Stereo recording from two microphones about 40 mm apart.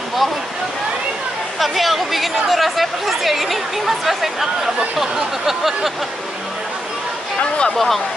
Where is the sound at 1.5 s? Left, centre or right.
Centre.